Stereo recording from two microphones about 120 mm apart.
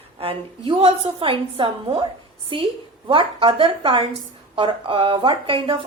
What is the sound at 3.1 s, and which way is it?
A woman's voice, 45° right (ahead or behind).